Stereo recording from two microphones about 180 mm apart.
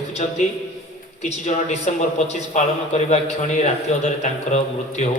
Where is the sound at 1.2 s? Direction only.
40° left (ahead or behind).